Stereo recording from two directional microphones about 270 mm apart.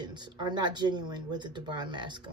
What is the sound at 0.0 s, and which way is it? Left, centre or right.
Speech, centre.